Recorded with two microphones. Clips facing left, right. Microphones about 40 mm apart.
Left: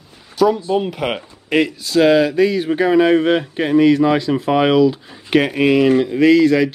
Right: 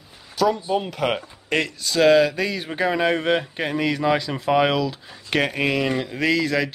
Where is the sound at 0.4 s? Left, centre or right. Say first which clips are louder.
Left 5 dB; centre.